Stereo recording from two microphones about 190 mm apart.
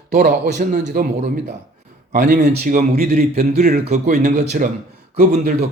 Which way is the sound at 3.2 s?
40° right (ahead or behind).